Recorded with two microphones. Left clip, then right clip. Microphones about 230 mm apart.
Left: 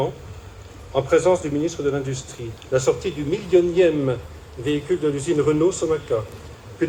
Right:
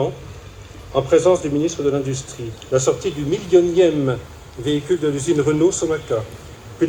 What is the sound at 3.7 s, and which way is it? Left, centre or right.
Speech, right.